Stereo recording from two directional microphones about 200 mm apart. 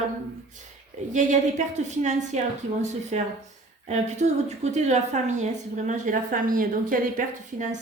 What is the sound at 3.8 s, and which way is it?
A woman's voice, 35° right (ahead or behind).